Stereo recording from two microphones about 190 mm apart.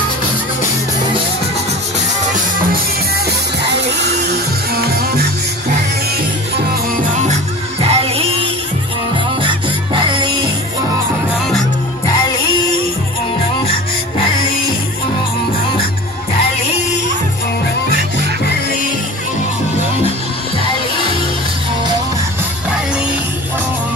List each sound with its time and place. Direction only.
3.6 s music: 65° right (ahead or behind)
7.8 s music: 30° right (ahead or behind)
9.9 s music: 25° right (ahead or behind)